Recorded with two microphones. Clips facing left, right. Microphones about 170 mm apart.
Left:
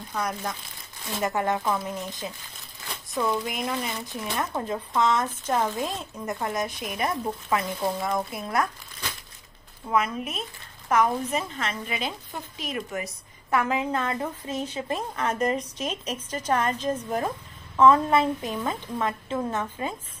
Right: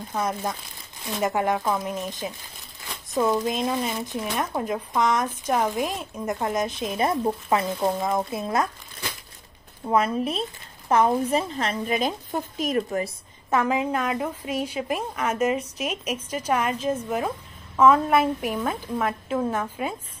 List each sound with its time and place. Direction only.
0.1 s speech: 20° right (ahead or behind)
9.8 s a woman's voice: 35° right (ahead or behind)
13.5 s speech: 20° right (ahead or behind)